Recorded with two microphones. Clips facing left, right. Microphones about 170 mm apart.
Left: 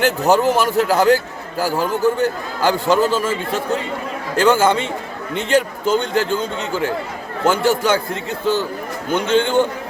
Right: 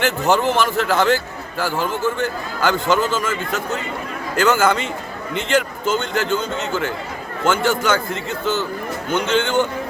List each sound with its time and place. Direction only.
0.0 s a man's voice: 35° left (ahead or behind)